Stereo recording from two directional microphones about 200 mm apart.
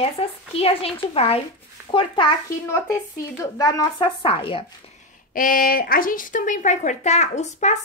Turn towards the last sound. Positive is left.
turn(degrees=35)  # may be behind; listen again after turning